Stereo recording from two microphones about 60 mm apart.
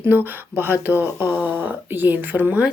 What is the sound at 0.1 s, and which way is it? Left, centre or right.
Speech, right.